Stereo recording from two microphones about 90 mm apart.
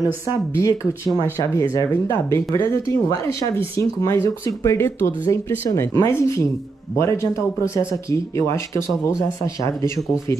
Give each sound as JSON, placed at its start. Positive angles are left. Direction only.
{"t": 0.6, "sound": "speech", "side_deg": 35}